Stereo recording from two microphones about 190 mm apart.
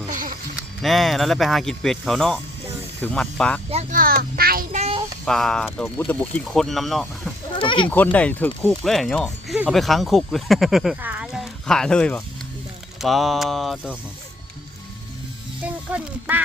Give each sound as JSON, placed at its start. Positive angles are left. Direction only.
{"t": 0.1, "sound": "a sound", "side_deg": -45}
{"t": 0.5, "sound": "speech", "side_deg": 0}
{"t": 3.9, "sound": "a child's voice", "side_deg": -50}
{"t": 4.8, "sound": "speech", "side_deg": -30}
{"t": 5.2, "sound": "speech", "side_deg": 0}
{"t": 7.6, "sound": "speech", "side_deg": 25}
{"t": 7.9, "sound": "speech", "side_deg": 10}
{"t": 15.6, "sound": "speech", "side_deg": -5}